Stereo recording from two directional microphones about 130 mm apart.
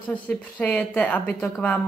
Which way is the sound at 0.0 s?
10° left (ahead or behind).